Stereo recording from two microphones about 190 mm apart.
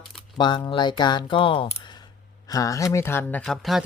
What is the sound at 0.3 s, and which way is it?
Speech, 25° left (ahead or behind).